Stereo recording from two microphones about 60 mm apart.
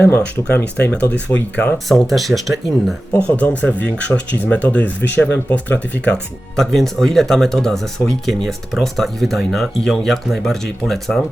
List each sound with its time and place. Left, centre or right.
0.0 s speech: left
1.9 s speech: centre
3.2 s speech: left
6.6 s speech: centre